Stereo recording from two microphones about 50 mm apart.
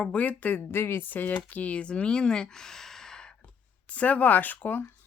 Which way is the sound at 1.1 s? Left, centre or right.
Left.